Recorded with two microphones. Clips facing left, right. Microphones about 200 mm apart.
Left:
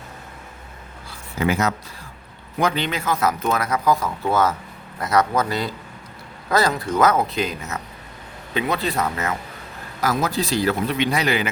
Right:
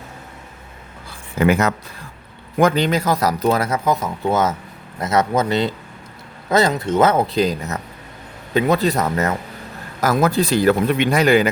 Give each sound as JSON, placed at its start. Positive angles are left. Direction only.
{"t": 1.4, "sound": "speech", "side_deg": -60}
{"t": 2.6, "sound": "a man's voice", "side_deg": -45}
{"t": 10.0, "sound": "speech", "side_deg": -50}